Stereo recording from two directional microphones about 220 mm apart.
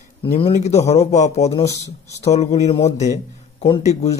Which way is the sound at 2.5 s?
30° left (ahead or behind).